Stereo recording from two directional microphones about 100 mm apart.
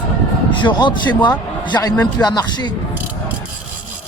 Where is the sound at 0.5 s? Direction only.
50° left (ahead or behind).